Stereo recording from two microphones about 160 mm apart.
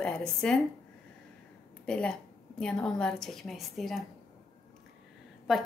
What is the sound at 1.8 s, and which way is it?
A woman's voice, 5° left (ahead or behind).